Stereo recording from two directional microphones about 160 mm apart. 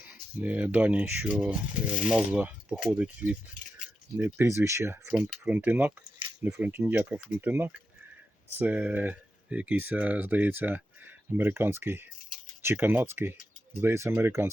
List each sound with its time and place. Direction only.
0.1 s speech: 10° right (ahead or behind)